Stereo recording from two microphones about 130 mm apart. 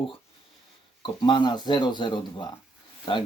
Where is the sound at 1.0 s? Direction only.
35° left (ahead or behind).